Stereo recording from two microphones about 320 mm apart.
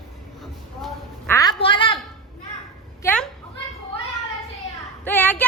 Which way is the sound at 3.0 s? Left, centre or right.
Centre.